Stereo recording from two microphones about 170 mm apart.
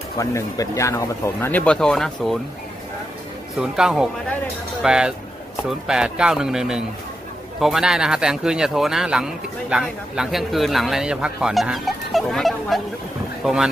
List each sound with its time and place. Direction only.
0.2 s speech: 20° left (ahead or behind); by 2.3 s centre (ahead or behind)
3.5 s speech: 5° right (ahead or behind)